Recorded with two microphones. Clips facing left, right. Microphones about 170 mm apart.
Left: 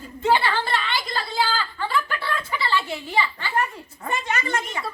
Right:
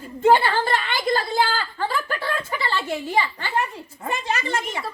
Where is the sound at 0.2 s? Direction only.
50° right (ahead or behind).